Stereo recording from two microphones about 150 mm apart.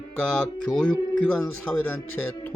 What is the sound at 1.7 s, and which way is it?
Speech, 15° left (ahead or behind).